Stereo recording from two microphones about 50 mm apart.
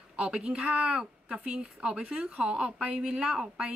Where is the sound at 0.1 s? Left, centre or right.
Centre.